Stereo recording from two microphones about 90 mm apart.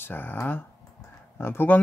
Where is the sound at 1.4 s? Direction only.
25° left (ahead or behind).